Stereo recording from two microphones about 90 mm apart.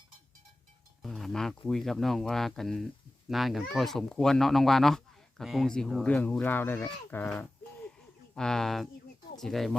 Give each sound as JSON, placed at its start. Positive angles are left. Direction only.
{"t": 1.0, "sound": "speech", "side_deg": 0}
{"t": 6.0, "sound": "speech", "side_deg": 15}
{"t": 8.4, "sound": "speech", "side_deg": 5}